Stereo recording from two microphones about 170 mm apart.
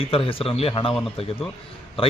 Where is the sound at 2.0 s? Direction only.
35° left (ahead or behind).